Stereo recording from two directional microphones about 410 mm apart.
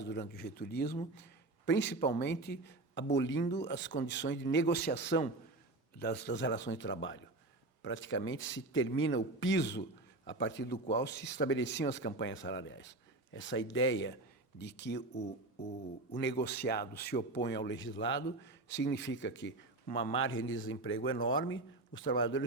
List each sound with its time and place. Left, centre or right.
0.0 s speech: left
19.9 s a man's voice: centre
20.1 s speech: left